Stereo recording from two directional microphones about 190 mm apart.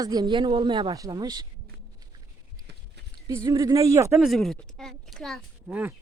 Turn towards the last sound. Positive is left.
turn(degrees=-5)  # may be behind; listen again after turning